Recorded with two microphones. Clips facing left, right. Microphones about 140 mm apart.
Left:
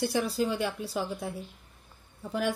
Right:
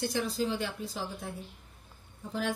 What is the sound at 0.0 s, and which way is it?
Speech, 65° left (ahead or behind).